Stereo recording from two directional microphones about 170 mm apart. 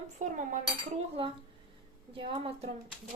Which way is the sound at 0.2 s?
50° right (ahead or behind).